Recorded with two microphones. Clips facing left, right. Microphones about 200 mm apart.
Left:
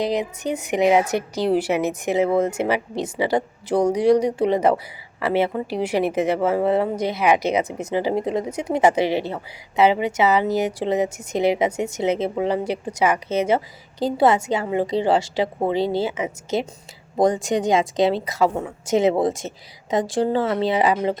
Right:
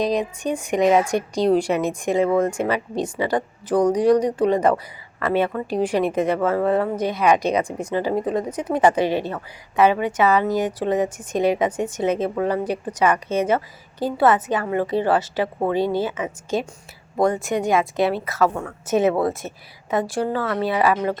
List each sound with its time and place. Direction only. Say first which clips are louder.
0.5 s a woman's voice: even; 10° left (ahead or behind)